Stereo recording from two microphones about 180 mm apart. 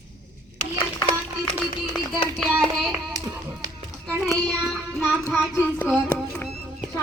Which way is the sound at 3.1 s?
20° right (ahead or behind).